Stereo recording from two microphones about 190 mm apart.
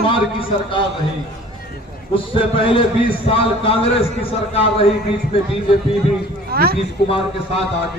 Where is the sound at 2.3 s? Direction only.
25° left (ahead or behind).